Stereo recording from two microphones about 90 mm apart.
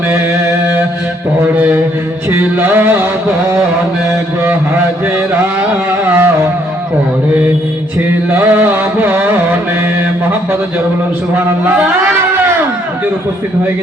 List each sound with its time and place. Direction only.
2.3 s music: 20° right (ahead or behind)
6.1 s music: 25° right (ahead or behind)
8.3 s music: 20° right (ahead or behind)